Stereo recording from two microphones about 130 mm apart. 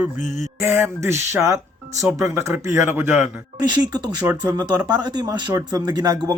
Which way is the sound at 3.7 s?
30° right (ahead or behind).